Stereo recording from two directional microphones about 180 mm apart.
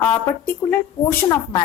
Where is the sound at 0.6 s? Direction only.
15° left (ahead or behind).